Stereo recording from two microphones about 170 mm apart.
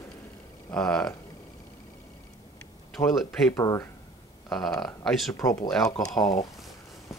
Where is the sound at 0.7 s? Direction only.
5° left (ahead or behind).